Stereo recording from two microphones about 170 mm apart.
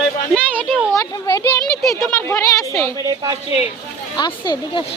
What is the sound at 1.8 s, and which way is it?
Speech, centre (ahead or behind).